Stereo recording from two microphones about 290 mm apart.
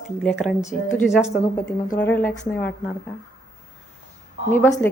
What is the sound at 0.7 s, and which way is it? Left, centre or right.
Speech, left.